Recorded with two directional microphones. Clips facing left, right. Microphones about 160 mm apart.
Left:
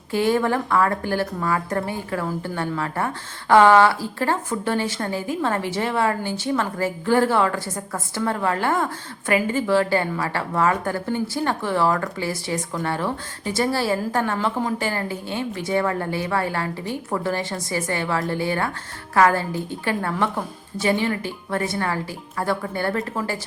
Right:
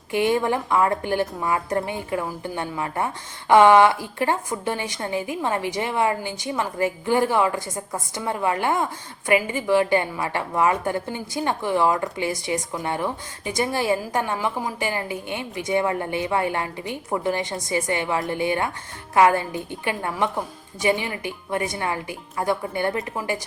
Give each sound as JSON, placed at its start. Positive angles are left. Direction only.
{"t": 0.1, "sound": "a woman's voice", "side_deg": -20}